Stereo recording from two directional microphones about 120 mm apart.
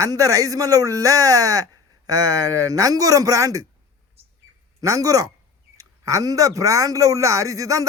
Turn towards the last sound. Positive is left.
turn(degrees=-30)  # may be behind; listen again after turning